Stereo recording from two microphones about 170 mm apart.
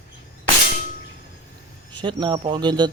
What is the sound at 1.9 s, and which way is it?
Speech, 25° right (ahead or behind).